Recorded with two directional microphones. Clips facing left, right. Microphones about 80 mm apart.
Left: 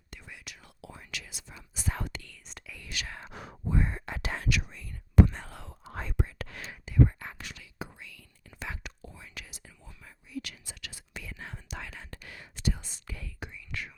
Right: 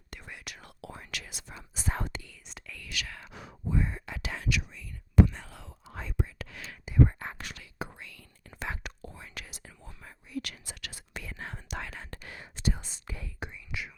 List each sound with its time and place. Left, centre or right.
0.1 s whispering: right
1.5 s speech: right
2.2 s speech: centre
2.7 s speech: left
3.3 s whispering: left
7.1 s whispering: right
7.3 s whispering: right
12.2 s whispering: right